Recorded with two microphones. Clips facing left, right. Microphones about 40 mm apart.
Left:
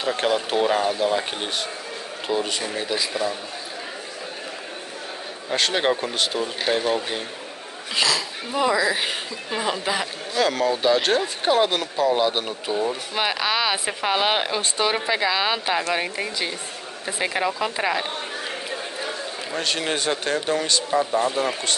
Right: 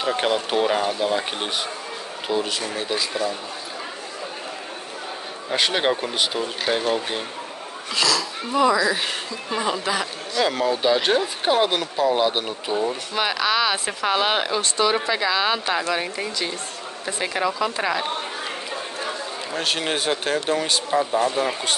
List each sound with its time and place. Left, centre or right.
0.0 s speech: centre
2.4 s speech: centre
5.5 s speech: centre
7.9 s speech: left
10.4 s speech: centre
13.1 s speech: centre
19.6 s speech: centre